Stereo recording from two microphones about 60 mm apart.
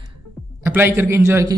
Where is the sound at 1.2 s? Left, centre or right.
Right.